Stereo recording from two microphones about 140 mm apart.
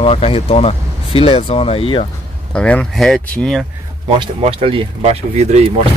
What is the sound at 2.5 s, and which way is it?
Speech, 10° left (ahead or behind).